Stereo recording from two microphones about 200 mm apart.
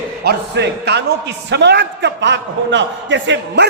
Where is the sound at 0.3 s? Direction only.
55° right (ahead or behind).